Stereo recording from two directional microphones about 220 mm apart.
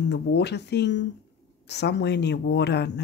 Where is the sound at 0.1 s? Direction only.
50° left (ahead or behind).